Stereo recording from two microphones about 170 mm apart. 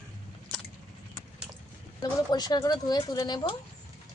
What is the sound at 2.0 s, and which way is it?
Speech, 25° left (ahead or behind).